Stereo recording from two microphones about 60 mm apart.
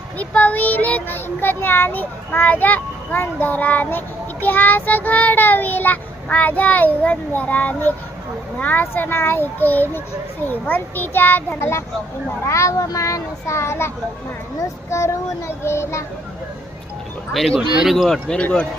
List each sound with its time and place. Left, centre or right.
0.2 s child singing: left
8.6 s a child's voice: left
12.5 s a child's voice: left
14.8 s child singing: left
17.3 s speech: centre